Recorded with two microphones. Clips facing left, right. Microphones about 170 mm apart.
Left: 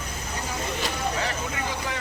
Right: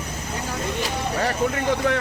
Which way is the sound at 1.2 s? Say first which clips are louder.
Right 8 dB; 60° right (ahead or behind).